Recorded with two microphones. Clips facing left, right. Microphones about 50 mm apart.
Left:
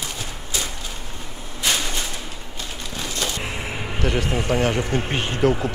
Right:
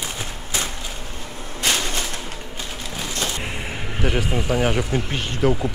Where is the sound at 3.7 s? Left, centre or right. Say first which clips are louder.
Left 1 dB; centre.